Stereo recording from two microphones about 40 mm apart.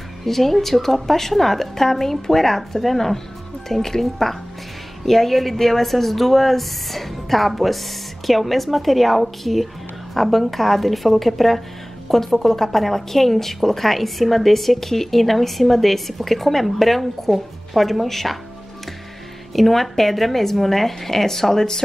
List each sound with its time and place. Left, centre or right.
0.2 s a woman's voice: centre
19.5 s a woman's voice: centre